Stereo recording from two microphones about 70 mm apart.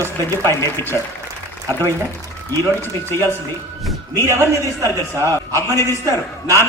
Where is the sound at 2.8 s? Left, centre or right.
Left.